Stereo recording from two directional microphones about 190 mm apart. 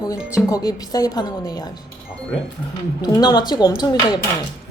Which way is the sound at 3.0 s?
20° left (ahead or behind).